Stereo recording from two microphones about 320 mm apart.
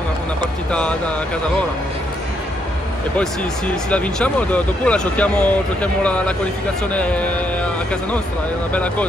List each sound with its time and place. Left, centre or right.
0.7 s speech: centre
3.2 s speech: centre